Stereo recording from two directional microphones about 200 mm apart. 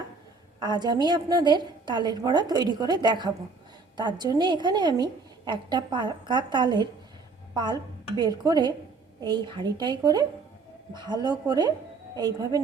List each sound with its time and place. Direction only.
0.6 s a woman's voice: 20° right (ahead or behind)